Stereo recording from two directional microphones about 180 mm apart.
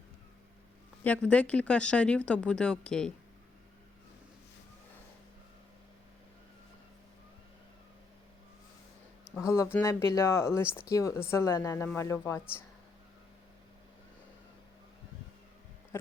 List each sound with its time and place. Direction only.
1.0 s speech: 5° left (ahead or behind)
9.3 s speech: 15° left (ahead or behind)